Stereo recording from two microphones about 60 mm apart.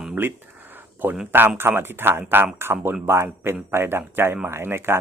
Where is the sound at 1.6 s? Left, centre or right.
Right.